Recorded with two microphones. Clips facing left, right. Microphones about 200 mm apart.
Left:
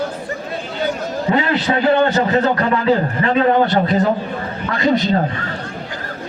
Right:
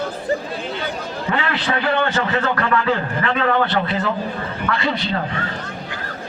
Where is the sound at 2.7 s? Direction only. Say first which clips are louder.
Left 4 dB; 25° left (ahead or behind); by 5.2 s 45° left (ahead or behind).